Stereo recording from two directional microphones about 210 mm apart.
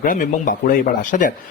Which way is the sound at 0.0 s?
40° left (ahead or behind).